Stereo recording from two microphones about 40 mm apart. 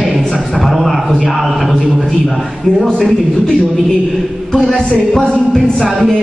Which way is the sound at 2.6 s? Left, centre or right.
Centre.